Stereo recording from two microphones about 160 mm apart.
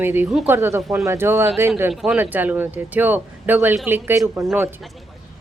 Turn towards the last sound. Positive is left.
turn(degrees=-5)  # may be behind; listen again after turning